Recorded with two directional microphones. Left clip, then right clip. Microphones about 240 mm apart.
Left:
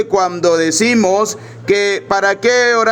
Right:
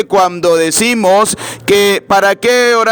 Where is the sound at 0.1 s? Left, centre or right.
Right.